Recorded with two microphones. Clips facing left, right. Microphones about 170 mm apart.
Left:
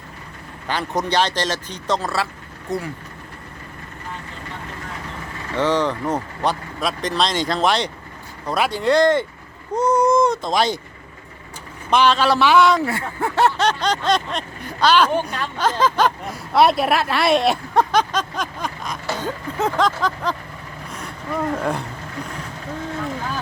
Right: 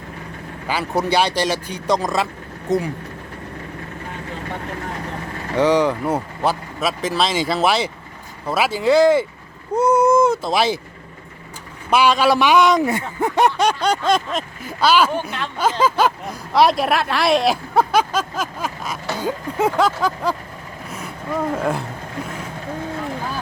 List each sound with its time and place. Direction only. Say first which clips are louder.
0.7 s a man's voice: right 2 dB; 5° right (ahead or behind)
5.5 s speech: right 4 dB; 10° right (ahead or behind)
11.9 s a man's voice: right 1 dB; 10° right (ahead or behind)
21.6 s speech: right 2 dB; centre (ahead or behind)